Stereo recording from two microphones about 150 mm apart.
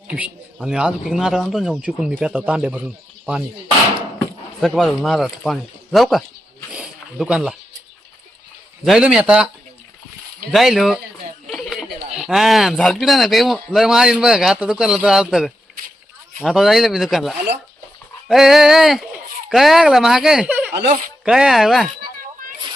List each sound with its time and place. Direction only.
0.1 s a man's voice: 5° right (ahead or behind)
4.6 s a man's voice: centre (ahead or behind)
6.7 s a sound: 5° right (ahead or behind)
8.8 s a man's voice: 5° right (ahead or behind)
10.5 s a man's voice: centre (ahead or behind)
11.4 s a sound: centre (ahead or behind)
12.1 s a man's voice: 5° right (ahead or behind)